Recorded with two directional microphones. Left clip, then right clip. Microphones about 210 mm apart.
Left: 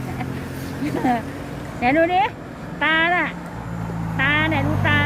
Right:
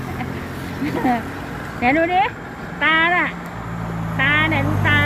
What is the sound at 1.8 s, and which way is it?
Speech, 10° left (ahead or behind).